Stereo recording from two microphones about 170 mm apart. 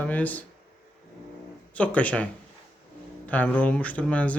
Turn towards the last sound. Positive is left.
turn(degrees=10)  # may be behind; listen again after turning